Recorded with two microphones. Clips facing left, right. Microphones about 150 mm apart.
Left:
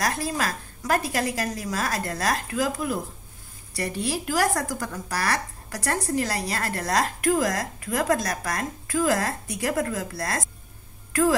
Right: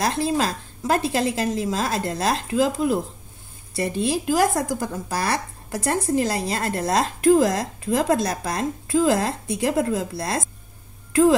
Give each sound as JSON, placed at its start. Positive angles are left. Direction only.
{"t": 0.0, "sound": "speech", "side_deg": -25}